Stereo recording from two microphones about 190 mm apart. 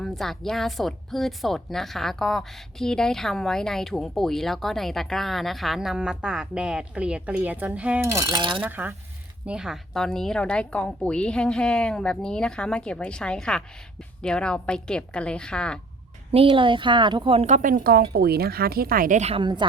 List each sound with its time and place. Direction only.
0.0 s a woman's voice: centre (ahead or behind); by 8.6 s 25° right (ahead or behind)
8.6 s a woman's voice: 10° right (ahead or behind)
16.3 s a woman's voice: 30° right (ahead or behind)